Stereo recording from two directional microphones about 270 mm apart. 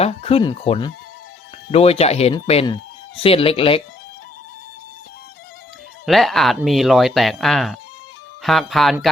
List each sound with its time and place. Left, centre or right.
0.0 s speech: left
6.1 s speech: centre